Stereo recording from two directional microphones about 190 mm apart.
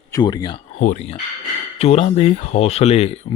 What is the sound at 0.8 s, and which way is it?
Speech, 40° left (ahead or behind).